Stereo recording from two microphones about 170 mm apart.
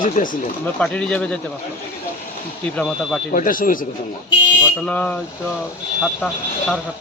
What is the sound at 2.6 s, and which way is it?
Speech, 5° left (ahead or behind).